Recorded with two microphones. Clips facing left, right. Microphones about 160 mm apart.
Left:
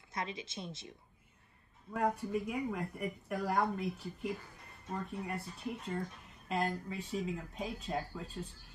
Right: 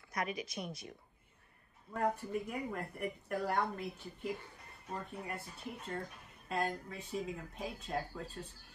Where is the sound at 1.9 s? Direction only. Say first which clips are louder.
Left 2 dB; 5° left (ahead or behind).